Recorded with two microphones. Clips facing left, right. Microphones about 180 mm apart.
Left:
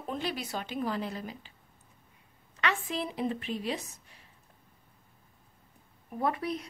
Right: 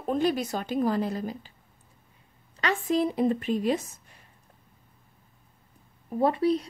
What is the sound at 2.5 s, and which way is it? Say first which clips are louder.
Speech: right 6 dB; 35° right (ahead or behind).